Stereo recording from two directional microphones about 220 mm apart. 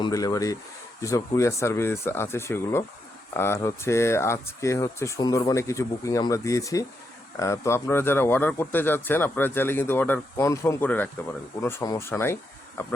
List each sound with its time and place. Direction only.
0.0 s speech: 15° left (ahead or behind)